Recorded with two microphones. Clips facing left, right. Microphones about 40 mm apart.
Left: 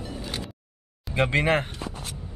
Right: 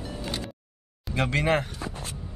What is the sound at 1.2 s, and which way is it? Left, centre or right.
Speech, left.